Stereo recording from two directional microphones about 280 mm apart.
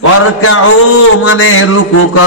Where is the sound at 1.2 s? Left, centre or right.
Left.